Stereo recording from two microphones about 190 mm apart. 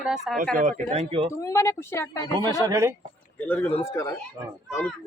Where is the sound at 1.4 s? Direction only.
15° left (ahead or behind).